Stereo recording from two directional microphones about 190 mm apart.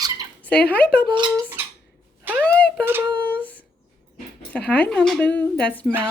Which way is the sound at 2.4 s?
5° left (ahead or behind).